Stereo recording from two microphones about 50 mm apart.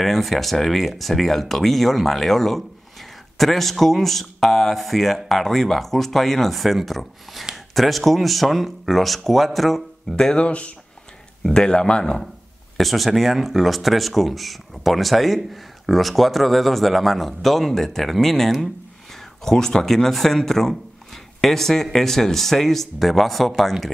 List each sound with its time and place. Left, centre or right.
0.0 s speech: centre
12.7 s speech: centre